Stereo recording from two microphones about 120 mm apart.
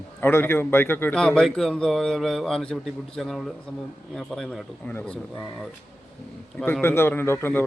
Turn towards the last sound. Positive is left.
turn(degrees=20)  # may be behind; listen again after turning